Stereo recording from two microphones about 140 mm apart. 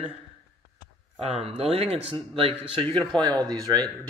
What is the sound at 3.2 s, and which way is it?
Speech, 30° right (ahead or behind).